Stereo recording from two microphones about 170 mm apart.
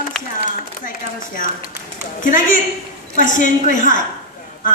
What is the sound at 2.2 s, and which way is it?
A woman's voice, 50° left (ahead or behind).